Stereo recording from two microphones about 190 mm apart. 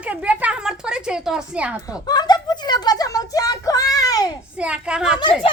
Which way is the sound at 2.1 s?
20° left (ahead or behind).